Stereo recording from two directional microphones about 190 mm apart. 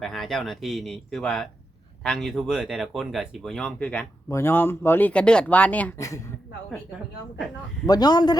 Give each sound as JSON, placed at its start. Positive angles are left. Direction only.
{"t": 0.0, "sound": "speech", "side_deg": 0}
{"t": 7.9, "sound": "a man's voice", "side_deg": 20}